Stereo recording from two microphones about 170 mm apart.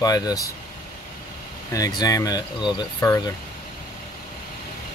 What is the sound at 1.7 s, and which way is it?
Speech, 20° left (ahead or behind).